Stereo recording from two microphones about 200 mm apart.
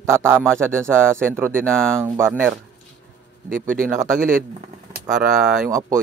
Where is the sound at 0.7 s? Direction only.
5° left (ahead or behind).